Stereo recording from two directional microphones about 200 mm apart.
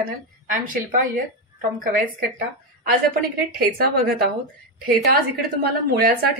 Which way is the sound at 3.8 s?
50° right (ahead or behind).